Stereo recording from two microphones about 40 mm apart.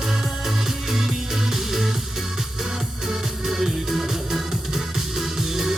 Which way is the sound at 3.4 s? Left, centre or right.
Centre.